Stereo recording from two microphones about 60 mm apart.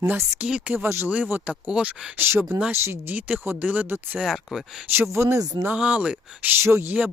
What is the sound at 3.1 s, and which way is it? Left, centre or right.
Speech, right.